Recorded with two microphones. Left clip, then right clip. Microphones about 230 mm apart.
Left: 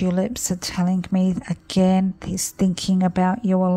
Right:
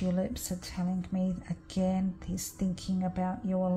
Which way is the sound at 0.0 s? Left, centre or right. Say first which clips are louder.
Left 10 dB; left.